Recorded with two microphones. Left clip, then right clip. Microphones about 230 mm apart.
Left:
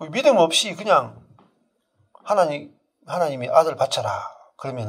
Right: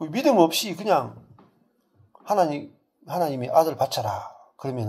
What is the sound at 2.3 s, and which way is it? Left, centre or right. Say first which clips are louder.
Speech: left 3 dB; left.